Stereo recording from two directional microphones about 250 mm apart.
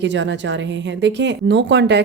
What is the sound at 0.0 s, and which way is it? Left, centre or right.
Speech, right.